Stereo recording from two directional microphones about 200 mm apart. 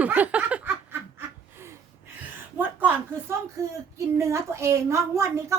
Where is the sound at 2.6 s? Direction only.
10° right (ahead or behind).